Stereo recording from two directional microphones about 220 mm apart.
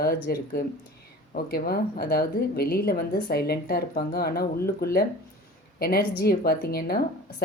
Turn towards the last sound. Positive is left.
turn(degrees=45)  # may be behind; listen again after turning